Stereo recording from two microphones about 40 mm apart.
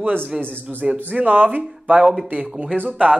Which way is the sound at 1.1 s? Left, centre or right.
Right.